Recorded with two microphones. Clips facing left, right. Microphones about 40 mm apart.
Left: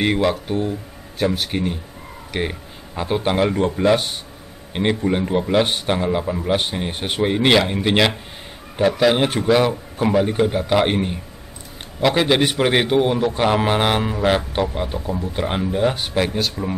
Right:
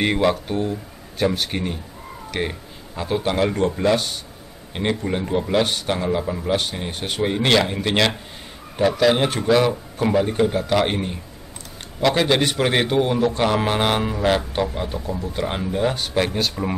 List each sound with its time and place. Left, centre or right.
0.0 s a man's voice: centre
3.0 s a man's voice: left
3.8 s a man's voice: left
16.3 s speech: centre